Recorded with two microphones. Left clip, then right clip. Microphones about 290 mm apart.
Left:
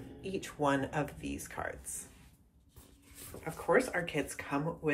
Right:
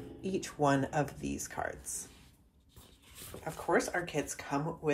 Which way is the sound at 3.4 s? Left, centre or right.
Centre.